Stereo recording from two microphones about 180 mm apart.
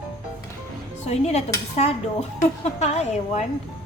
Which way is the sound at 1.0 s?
35° left (ahead or behind).